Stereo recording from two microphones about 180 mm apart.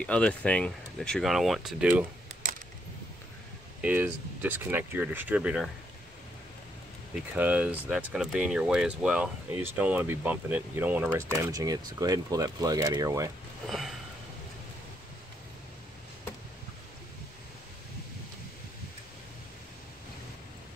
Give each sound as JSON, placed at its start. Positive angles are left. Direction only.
{"t": 0.0, "sound": "speech", "side_deg": 5}
{"t": 3.8, "sound": "speech", "side_deg": -10}
{"t": 7.3, "sound": "speech", "side_deg": -10}
{"t": 13.7, "sound": "speech", "side_deg": 0}